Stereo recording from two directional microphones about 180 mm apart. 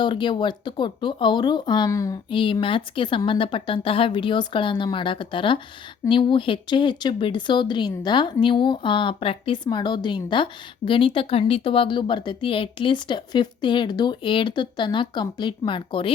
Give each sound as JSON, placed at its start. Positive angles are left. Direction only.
{"t": 0.0, "sound": "speech", "side_deg": 25}
{"t": 2.3, "sound": "speech", "side_deg": 30}